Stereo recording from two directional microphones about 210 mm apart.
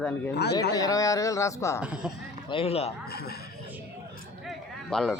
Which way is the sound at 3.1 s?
50° left (ahead or behind).